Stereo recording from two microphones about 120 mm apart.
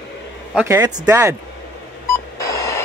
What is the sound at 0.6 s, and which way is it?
Speech, 25° right (ahead or behind).